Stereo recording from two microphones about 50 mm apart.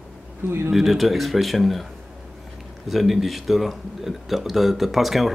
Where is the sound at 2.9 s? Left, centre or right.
Centre.